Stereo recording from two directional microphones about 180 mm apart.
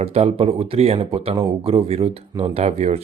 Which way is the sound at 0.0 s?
35° right (ahead or behind).